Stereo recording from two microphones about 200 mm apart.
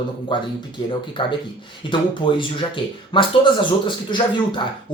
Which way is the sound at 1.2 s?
25° left (ahead or behind).